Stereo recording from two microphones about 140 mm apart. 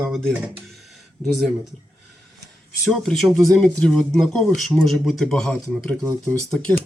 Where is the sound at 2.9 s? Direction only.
Centre (ahead or behind).